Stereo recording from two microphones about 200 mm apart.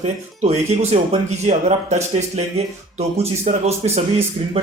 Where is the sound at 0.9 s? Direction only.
35° right (ahead or behind).